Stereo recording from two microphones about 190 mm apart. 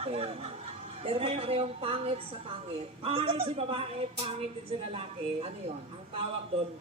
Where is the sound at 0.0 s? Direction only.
30° right (ahead or behind).